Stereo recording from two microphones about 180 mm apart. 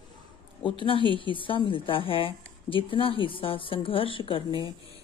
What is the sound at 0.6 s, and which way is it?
A woman's voice, 30° left (ahead or behind).